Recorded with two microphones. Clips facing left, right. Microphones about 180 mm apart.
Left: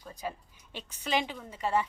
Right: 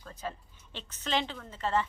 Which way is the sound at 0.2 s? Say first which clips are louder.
Left 1 dB; 10° left (ahead or behind).